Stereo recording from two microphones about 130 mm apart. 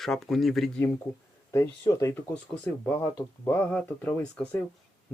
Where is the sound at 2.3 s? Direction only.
10° left (ahead or behind).